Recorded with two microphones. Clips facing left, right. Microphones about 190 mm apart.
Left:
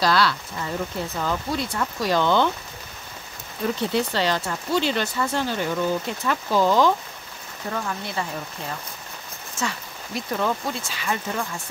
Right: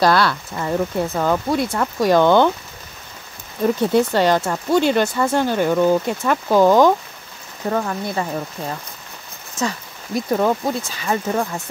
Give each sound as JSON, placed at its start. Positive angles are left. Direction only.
{"t": 0.0, "sound": "speech", "side_deg": -55}
{"t": 3.9, "sound": "speech", "side_deg": -50}
{"t": 9.6, "sound": "speech", "side_deg": -40}